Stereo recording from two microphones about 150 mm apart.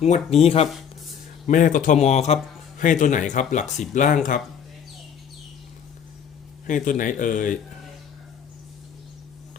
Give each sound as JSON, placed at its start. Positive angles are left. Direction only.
{"t": 0.0, "sound": "speech", "side_deg": 45}
{"t": 1.5, "sound": "a man's voice", "side_deg": 60}
{"t": 6.7, "sound": "a man's voice", "side_deg": 60}